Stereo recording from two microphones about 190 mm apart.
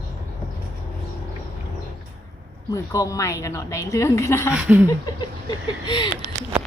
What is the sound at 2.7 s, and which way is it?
A woman's voice, 15° left (ahead or behind).